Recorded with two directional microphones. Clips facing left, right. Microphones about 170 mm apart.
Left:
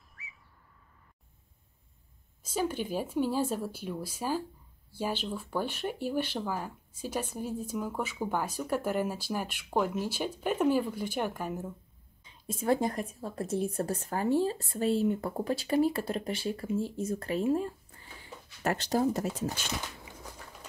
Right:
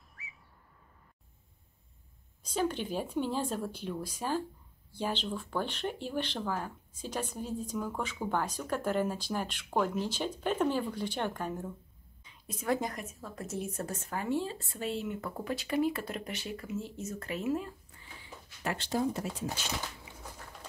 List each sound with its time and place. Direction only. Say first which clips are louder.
0.1 s bird: even; centre (ahead or behind)
2.4 s speech: left 1 dB; 10° left (ahead or behind)
12.3 s a woman's voice: left 4 dB; 30° left (ahead or behind)
18.2 s speech: left 5 dB; 45° left (ahead or behind)